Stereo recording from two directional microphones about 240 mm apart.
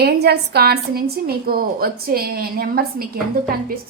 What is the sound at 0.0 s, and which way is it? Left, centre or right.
A woman's voice, right.